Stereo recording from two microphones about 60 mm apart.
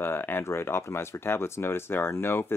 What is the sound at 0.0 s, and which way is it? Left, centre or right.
Speech, left.